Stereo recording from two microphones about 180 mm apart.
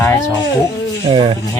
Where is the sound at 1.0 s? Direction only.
30° right (ahead or behind).